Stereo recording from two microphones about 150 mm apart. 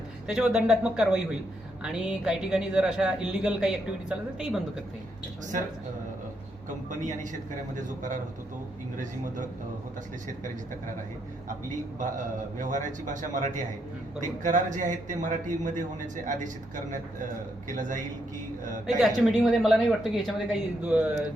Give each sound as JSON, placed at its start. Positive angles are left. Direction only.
{"t": 0.3, "sound": "a man's voice", "side_deg": -5}
{"t": 11.9, "sound": "a man's voice", "side_deg": -60}
{"t": 17.7, "sound": "a man's voice", "side_deg": -60}
{"t": 19.0, "sound": "a woman's voice", "side_deg": 0}